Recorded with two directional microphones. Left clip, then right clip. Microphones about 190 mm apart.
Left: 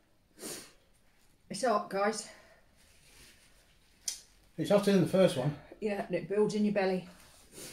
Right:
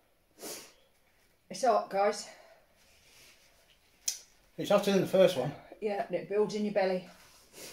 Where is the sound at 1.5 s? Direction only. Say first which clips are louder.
Right 3 dB; 15° left (ahead or behind).